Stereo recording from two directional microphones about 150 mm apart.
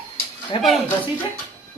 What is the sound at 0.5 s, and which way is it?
Speech, 35° left (ahead or behind).